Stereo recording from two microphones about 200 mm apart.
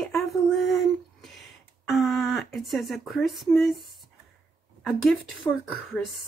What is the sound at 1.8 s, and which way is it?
Speech, centre (ahead or behind).